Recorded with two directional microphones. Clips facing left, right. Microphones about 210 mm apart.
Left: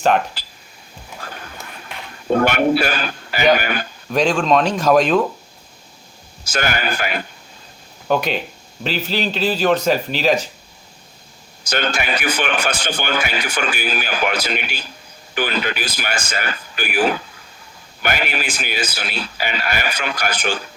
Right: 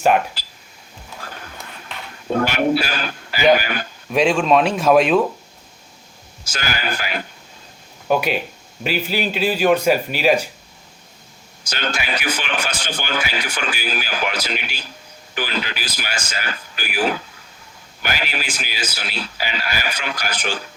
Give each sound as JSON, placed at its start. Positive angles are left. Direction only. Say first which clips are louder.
{"t": 2.4, "sound": "a man's voice", "louder": "left 2 dB", "side_deg": 55}
{"t": 4.1, "sound": "a man's voice", "louder": "even", "side_deg": -5}
{"t": 6.5, "sound": "a man's voice", "louder": "left 4 dB", "side_deg": 55}
{"t": 8.0, "sound": "a man's voice", "louder": "even", "side_deg": -5}
{"t": 11.6, "sound": "a man's voice", "louder": "left 4 dB", "side_deg": 55}